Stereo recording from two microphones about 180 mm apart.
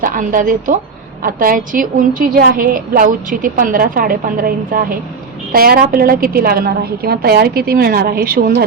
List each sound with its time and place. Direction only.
0.0 s a woman's voice: 50° right (ahead or behind)